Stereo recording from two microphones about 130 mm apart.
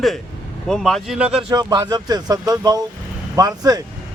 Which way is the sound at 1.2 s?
10° right (ahead or behind).